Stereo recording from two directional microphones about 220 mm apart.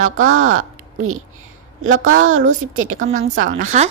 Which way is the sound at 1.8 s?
70° right (ahead or behind).